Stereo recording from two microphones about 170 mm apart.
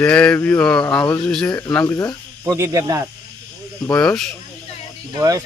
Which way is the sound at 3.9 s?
5° left (ahead or behind).